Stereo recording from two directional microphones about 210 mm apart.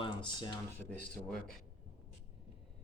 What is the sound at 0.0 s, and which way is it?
Speech, 20° left (ahead or behind).